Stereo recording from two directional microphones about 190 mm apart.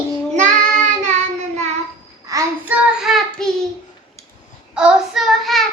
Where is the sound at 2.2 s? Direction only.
15° right (ahead or behind); by 3.7 s centre (ahead or behind).